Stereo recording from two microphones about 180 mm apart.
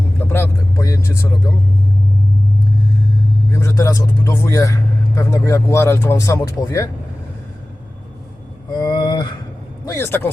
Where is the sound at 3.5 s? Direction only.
15° left (ahead or behind).